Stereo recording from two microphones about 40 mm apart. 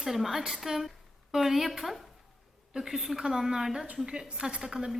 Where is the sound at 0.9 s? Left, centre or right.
Centre.